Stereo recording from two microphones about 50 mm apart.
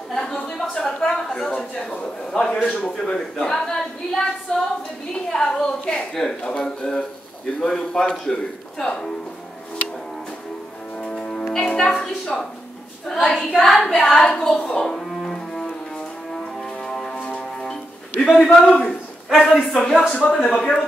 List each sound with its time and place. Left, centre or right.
0.1 s a sound: centre
1.3 s a woman's voice: centre
11.0 s music: centre
13.0 s a sound: centre
13.6 s a woman's voice: centre
15.3 s cello: centre
16.6 s music: centre
17.1 s music: left
18.2 s a woman's voice: centre